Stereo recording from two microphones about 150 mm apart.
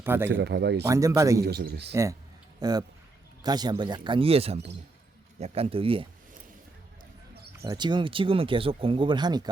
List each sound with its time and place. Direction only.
0.0 s speech: 15° right (ahead or behind)
0.4 s speech: 90° right
0.9 s speech: 20° right (ahead or behind)
1.5 s speech: 90° right
1.9 s speech: 20° right (ahead or behind); by 6.1 s 40° right (ahead or behind)
7.6 s speech: 25° right (ahead or behind)